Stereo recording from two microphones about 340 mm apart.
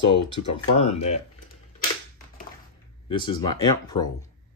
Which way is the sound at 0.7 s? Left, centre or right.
Centre.